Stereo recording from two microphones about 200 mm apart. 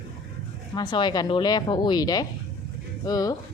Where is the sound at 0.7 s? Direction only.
20° left (ahead or behind).